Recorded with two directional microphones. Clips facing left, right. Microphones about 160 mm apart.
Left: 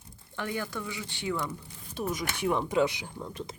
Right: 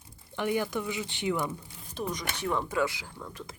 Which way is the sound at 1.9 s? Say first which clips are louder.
Left 2 dB; 5° left (ahead or behind).